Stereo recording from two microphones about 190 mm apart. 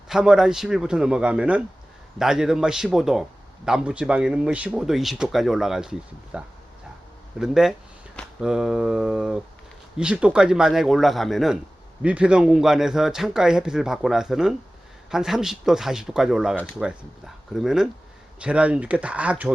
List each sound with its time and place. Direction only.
0.1 s speech: 5° right (ahead or behind)